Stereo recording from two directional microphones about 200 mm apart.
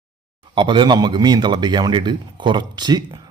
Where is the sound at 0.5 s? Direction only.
25° right (ahead or behind).